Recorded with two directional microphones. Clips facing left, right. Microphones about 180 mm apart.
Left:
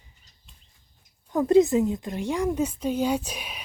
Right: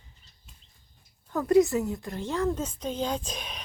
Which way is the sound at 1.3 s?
20° left (ahead or behind).